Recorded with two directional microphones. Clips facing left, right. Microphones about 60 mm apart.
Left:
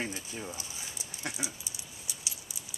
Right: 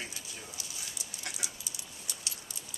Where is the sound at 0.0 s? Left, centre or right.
Left.